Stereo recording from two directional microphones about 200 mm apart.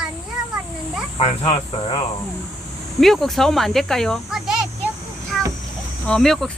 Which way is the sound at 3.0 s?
Centre (ahead or behind).